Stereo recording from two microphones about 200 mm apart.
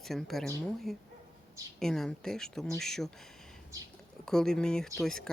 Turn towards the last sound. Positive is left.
turn(degrees=5)  # may be behind; listen again after turning